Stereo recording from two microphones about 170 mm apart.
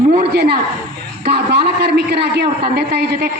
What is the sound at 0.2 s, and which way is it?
A woman's voice, 70° right (ahead or behind).